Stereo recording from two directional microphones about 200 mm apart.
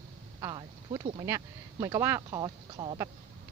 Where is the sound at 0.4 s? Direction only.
20° right (ahead or behind).